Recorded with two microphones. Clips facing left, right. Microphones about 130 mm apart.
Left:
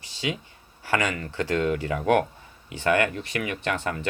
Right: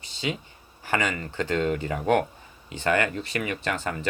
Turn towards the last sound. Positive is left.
turn(degrees=65)  # may be behind; listen again after turning